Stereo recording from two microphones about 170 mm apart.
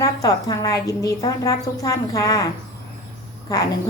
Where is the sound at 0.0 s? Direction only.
20° left (ahead or behind).